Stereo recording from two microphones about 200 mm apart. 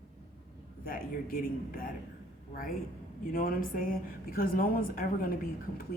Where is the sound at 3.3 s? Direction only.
45° left (ahead or behind).